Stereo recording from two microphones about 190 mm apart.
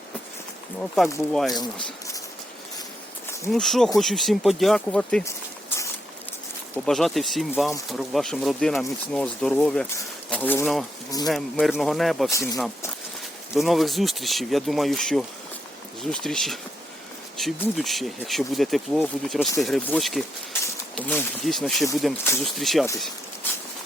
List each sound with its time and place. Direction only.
0.8 s speech: centre (ahead or behind)
1.5 s speech: 20° left (ahead or behind)
3.5 s speech: centre (ahead or behind)
5.2 s a sound: 15° left (ahead or behind)
6.8 s speech: centre (ahead or behind)
12.3 s speech: 15° left (ahead or behind)
13.5 s speech: centre (ahead or behind)